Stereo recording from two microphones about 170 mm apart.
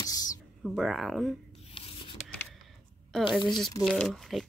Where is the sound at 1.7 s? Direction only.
30° left (ahead or behind).